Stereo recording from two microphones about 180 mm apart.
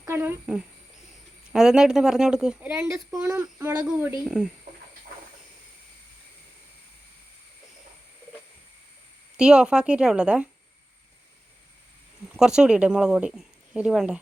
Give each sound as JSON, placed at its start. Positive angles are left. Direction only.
{"t": 0.0, "sound": "speech", "side_deg": -10}
{"t": 9.4, "sound": "speech", "side_deg": -5}
{"t": 12.4, "sound": "speech", "side_deg": -5}